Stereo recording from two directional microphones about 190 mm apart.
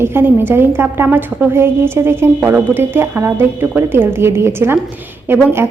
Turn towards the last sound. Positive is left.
turn(degrees=-10)  # may be behind; listen again after turning